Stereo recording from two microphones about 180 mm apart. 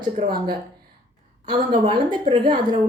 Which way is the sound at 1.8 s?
25° right (ahead or behind).